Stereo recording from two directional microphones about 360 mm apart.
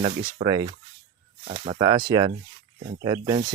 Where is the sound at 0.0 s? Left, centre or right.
Centre.